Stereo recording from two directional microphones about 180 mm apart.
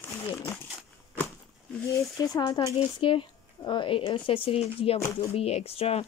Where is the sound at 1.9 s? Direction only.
20° left (ahead or behind).